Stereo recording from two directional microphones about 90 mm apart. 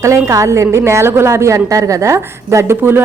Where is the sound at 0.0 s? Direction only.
35° right (ahead or behind).